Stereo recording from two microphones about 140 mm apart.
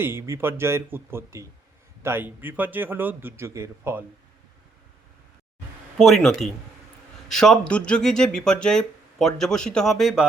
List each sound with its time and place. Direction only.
0.0 s a man's voice: 15° right (ahead or behind)
6.0 s speech: centre (ahead or behind)